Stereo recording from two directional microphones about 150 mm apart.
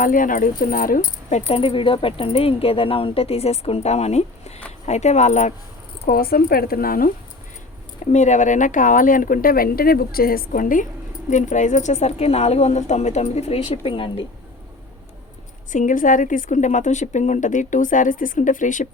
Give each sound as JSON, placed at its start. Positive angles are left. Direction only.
{"t": 0.0, "sound": "a woman's voice", "side_deg": 65}
{"t": 1.3, "sound": "speech", "side_deg": 45}
{"t": 6.1, "sound": "a woman's voice", "side_deg": 80}
{"t": 8.1, "sound": "a woman's voice", "side_deg": 55}
{"t": 11.3, "sound": "speech", "side_deg": 55}
{"t": 15.7, "sound": "a woman's voice", "side_deg": 60}